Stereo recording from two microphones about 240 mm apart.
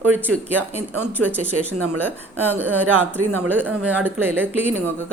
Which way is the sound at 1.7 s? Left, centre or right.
Right.